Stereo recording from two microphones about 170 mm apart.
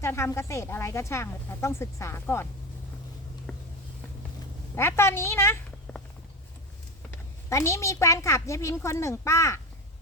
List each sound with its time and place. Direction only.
0.0 s speech: 15° left (ahead or behind)
3.5 s a sound: 5° left (ahead or behind)
4.7 s speech: 15° left (ahead or behind)
7.5 s speech: 15° left (ahead or behind)